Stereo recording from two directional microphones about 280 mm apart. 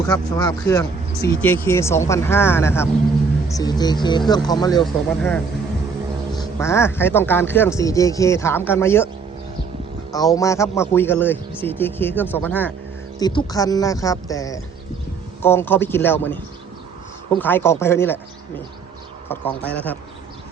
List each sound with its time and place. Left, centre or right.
0.0 s a man's voice: centre
4.8 s a man's voice: centre
10.1 s a man's voice: centre
19.3 s speech: centre